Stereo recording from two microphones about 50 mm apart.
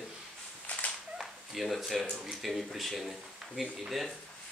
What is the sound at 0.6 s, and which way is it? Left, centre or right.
Cat, left.